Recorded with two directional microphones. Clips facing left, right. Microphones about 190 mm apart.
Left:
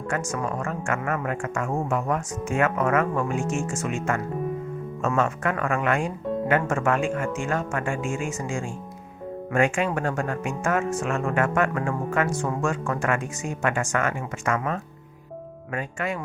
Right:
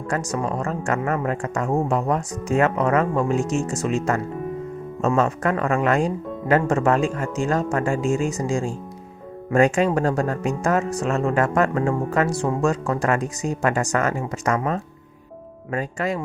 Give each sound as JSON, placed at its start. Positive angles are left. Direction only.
{"t": 0.1, "sound": "speech", "side_deg": -35}